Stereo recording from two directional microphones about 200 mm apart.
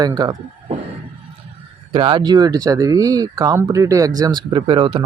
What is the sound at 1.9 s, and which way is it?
Speech, 25° right (ahead or behind).